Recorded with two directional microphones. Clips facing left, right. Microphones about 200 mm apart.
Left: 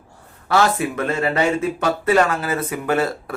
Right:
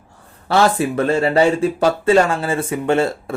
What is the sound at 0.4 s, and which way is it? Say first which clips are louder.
Speech: right 2 dB; 30° right (ahead or behind).